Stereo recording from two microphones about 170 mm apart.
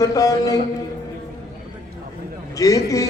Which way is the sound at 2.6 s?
20° left (ahead or behind).